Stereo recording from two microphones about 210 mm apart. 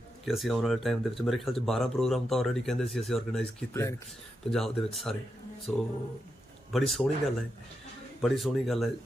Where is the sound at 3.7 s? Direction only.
15° left (ahead or behind).